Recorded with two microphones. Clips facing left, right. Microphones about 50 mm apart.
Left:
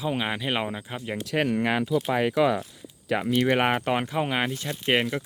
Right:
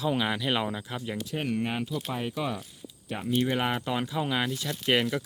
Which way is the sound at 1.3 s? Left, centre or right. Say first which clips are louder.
Left 7 dB; left.